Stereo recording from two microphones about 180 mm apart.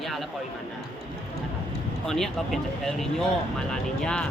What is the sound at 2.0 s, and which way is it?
Speech, centre (ahead or behind).